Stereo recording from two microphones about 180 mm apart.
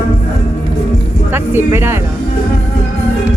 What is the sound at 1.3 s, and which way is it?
Speech, 10° right (ahead or behind).